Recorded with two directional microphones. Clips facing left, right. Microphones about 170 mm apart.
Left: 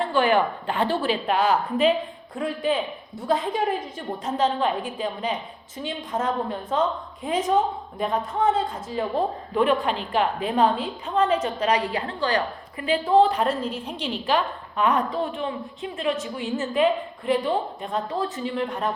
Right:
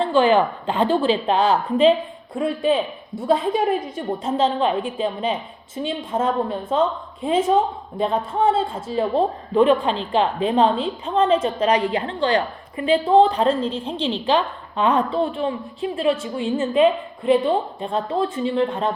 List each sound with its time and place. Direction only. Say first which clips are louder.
0.0 s a woman's voice: right 4 dB; 20° right (ahead or behind)
16.4 s a woman's voice: right 5 dB; 25° right (ahead or behind)